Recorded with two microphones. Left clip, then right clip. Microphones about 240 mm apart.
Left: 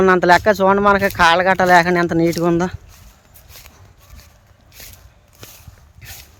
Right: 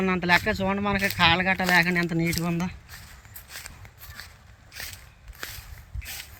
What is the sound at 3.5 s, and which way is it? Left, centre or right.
Walk, centre.